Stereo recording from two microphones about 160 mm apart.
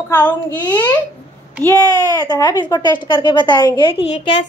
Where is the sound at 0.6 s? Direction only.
25° left (ahead or behind).